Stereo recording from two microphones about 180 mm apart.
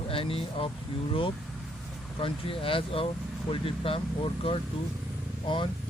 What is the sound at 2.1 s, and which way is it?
Speech, 30° left (ahead or behind).